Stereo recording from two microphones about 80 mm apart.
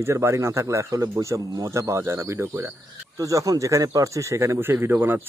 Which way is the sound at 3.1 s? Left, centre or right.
Right.